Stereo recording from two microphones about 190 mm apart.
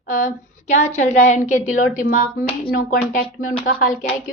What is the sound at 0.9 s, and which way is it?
A woman's voice, 35° left (ahead or behind).